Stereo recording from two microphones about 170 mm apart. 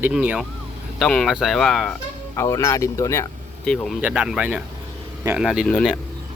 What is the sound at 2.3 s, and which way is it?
Speech, 15° left (ahead or behind).